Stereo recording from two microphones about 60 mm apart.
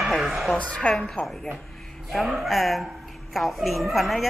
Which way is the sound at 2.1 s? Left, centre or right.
Centre.